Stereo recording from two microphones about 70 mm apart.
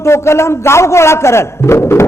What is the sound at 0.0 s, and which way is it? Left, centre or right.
A man's voice, left.